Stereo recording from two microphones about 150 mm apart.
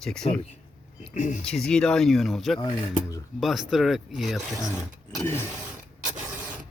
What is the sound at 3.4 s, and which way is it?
Speech, centre (ahead or behind).